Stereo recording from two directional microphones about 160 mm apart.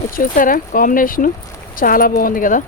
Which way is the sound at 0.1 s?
60° left (ahead or behind).